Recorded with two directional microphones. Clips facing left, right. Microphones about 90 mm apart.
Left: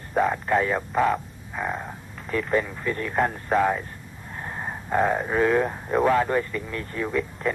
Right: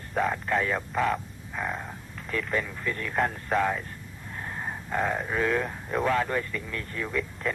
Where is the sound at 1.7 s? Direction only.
20° left (ahead or behind).